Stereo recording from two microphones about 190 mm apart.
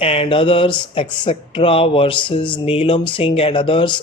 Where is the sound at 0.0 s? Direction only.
30° left (ahead or behind).